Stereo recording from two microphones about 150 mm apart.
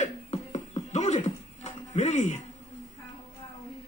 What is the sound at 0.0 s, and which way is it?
Music, 50° left (ahead or behind).